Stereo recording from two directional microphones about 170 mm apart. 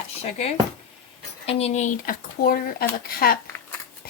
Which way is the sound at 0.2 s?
40° left (ahead or behind).